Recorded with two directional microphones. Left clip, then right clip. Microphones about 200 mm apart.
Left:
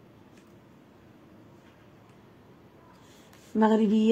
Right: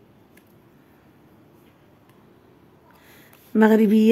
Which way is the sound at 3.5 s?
40° right (ahead or behind).